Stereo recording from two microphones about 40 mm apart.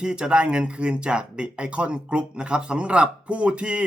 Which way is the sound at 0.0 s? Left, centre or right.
Right.